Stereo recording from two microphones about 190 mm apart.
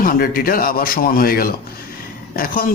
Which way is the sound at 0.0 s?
50° left (ahead or behind).